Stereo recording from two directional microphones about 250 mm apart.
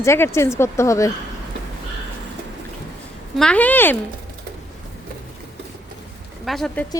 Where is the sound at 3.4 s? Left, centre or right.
Centre.